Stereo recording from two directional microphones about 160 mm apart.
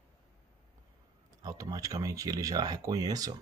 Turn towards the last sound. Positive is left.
turn(degrees=-25)  # may be behind; listen again after turning